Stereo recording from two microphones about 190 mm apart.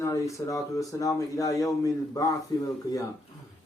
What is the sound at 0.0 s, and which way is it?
Speech, 15° left (ahead or behind).